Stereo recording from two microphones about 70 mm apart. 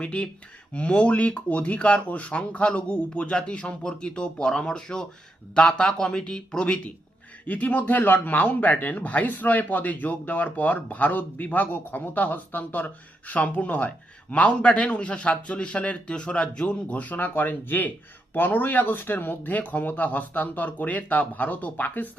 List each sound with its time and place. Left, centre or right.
0.0 s speech: centre
7.4 s speech: left